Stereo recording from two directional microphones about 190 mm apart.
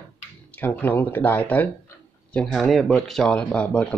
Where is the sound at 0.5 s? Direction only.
10° left (ahead or behind).